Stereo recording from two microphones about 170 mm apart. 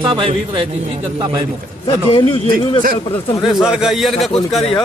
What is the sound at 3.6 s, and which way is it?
Speech, 5° right (ahead or behind).